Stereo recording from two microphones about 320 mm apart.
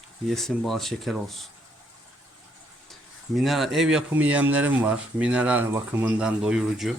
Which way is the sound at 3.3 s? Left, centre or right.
Centre.